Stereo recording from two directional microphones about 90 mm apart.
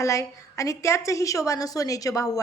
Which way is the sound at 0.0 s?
35° left (ahead or behind).